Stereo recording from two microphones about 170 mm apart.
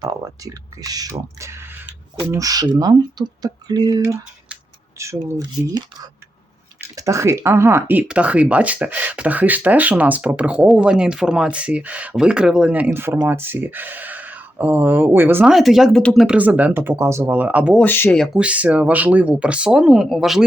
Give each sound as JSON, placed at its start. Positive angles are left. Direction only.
{"t": 0.0, "sound": "speech", "side_deg": -20}
{"t": 4.0, "sound": "speech", "side_deg": -10}
{"t": 6.8, "sound": "speech", "side_deg": -15}
{"t": 15.5, "sound": "speech", "side_deg": 0}
{"t": 17.7, "sound": "speech", "side_deg": 10}
{"t": 18.2, "sound": "speech", "side_deg": -5}